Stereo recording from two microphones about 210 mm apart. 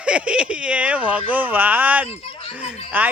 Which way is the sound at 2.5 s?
5° right (ahead or behind).